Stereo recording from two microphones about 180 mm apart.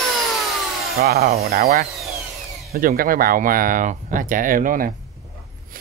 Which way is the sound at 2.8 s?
55° right (ahead or behind).